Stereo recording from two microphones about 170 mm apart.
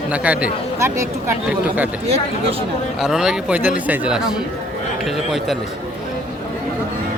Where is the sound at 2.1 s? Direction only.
35° right (ahead or behind).